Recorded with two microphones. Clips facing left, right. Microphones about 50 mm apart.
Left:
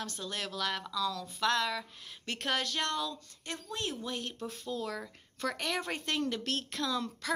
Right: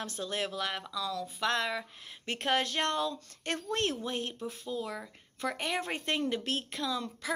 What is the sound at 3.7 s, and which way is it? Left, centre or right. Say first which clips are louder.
Speech: right 5 dB; right.